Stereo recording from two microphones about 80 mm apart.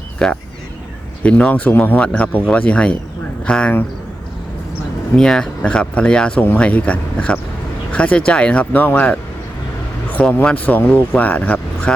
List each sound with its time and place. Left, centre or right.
0.2 s speech: centre
5.1 s speech: centre